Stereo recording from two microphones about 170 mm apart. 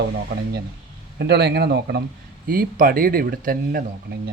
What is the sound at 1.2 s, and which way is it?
Speech, 75° right (ahead or behind).